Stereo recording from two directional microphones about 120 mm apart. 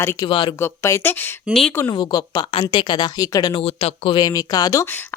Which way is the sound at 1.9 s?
35° left (ahead or behind).